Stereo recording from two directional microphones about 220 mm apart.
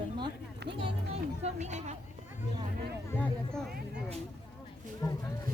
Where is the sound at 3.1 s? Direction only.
5° left (ahead or behind).